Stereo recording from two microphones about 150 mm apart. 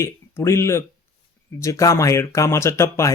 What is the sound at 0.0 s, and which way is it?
Speech, 20° left (ahead or behind).